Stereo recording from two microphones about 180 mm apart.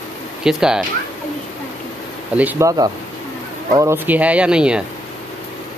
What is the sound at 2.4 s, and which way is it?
Speech, 10° right (ahead or behind).